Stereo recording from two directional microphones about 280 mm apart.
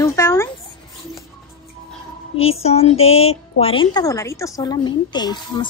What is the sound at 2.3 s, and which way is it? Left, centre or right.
Speech, left.